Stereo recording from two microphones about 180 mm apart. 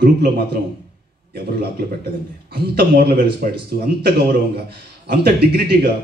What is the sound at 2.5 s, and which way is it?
A man's voice, 60° right (ahead or behind).